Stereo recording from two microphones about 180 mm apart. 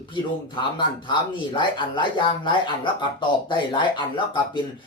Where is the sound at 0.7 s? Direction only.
25° left (ahead or behind).